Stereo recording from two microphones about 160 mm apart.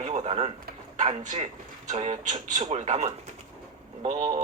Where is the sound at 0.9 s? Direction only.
50° right (ahead or behind).